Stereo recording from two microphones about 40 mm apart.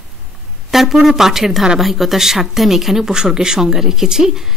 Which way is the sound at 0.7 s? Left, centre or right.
Centre.